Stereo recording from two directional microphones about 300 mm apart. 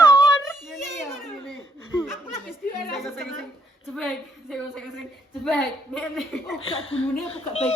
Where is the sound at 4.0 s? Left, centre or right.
Centre.